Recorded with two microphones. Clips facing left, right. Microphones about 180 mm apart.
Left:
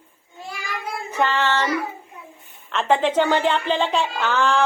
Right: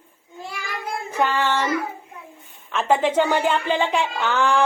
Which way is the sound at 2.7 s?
10° right (ahead or behind).